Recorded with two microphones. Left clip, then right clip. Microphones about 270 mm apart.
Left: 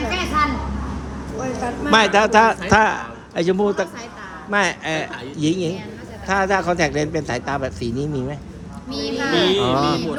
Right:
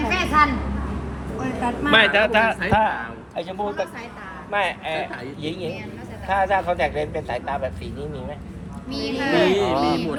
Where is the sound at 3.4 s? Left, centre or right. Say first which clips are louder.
Left 7 dB; left.